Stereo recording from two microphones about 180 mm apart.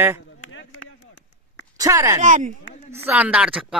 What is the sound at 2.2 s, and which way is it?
Speech, 45° right (ahead or behind).